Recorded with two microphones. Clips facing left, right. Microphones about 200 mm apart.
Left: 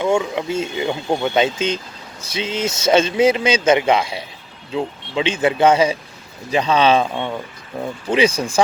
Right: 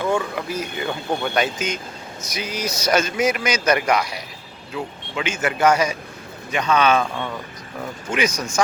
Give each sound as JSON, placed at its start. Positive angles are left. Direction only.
{"t": 0.2, "sound": "speech", "side_deg": 25}